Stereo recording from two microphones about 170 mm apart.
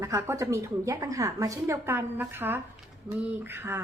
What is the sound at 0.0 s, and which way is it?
Speech, 15° right (ahead or behind).